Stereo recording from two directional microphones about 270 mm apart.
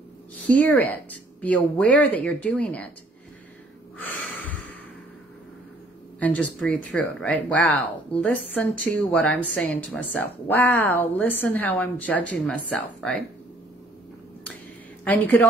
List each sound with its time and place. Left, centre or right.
0.5 s speech: centre
4.0 s a sound: centre
6.1 s a woman's voice: centre
15.0 s a woman's voice: centre